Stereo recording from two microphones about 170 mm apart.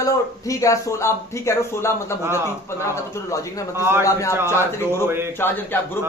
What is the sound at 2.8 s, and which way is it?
Speech, 15° left (ahead or behind).